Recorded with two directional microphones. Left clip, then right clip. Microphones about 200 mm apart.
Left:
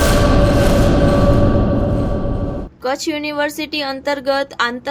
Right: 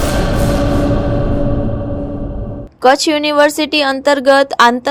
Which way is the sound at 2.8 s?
35° right (ahead or behind).